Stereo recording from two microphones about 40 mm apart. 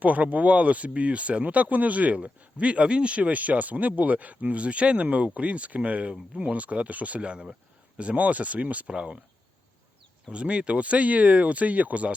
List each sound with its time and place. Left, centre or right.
0.0 s speech: right
6.1 s speech: right
6.5 s speech: right
7.2 s speech: right
8.9 s speech: right
10.3 s speech: right